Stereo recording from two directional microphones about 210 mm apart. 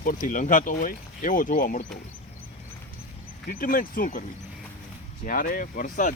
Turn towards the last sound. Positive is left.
turn(degrees=40)  # may be behind; listen again after turning